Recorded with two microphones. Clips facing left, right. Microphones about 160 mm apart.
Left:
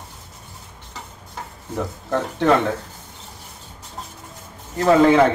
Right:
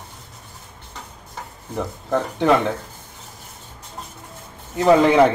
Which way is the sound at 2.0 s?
5° right (ahead or behind).